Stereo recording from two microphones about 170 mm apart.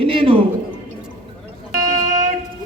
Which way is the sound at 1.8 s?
45° right (ahead or behind).